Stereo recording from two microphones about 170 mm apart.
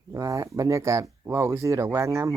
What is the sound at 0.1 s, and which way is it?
Speech, 20° right (ahead or behind).